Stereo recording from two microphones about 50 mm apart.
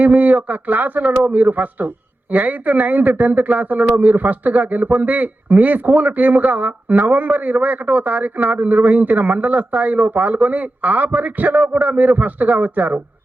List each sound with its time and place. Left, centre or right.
0.0 s a man's voice: right